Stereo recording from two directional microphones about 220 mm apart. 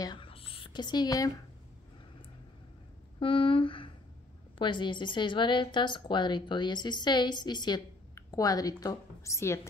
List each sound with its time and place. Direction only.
0.0 s whispering: 20° left (ahead or behind)
3.2 s speech: 25° left (ahead or behind)